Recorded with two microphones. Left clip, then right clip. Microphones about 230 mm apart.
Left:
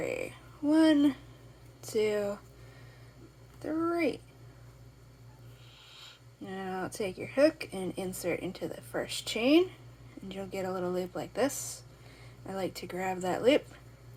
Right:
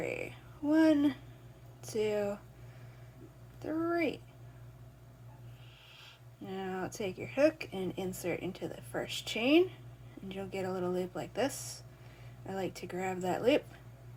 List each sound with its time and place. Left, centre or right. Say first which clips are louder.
0.0 s a sound: left 3 dB; centre
0.7 s a woman's voice: left 3 dB; centre
3.6 s a woman's voice: left 2 dB; centre
6.4 s a woman's voice: left 2 dB; centre